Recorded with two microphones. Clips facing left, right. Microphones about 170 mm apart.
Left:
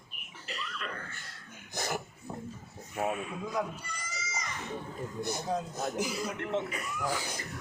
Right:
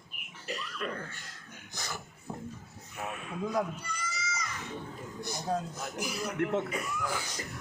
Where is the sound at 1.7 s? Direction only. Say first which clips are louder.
Left 7 dB; 50° left (ahead or behind).